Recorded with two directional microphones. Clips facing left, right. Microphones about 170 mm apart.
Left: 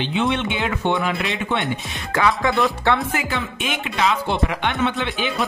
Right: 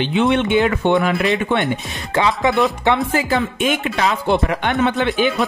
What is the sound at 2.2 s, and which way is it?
Music, 20° right (ahead or behind).